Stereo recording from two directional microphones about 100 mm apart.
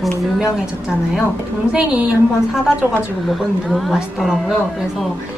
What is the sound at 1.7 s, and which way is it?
Speech, 10° right (ahead or behind).